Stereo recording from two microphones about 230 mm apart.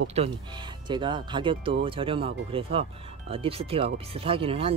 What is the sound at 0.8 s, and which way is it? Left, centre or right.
Speech, centre.